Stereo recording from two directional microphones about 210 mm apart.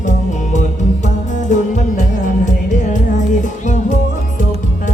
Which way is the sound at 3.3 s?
35° left (ahead or behind).